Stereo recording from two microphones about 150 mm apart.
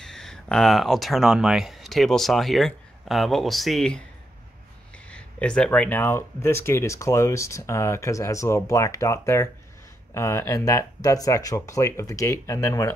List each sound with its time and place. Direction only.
0.0 s speech: 5° left (ahead or behind)
5.1 s speech: 5° left (ahead or behind); by 12.9 s 25° left (ahead or behind)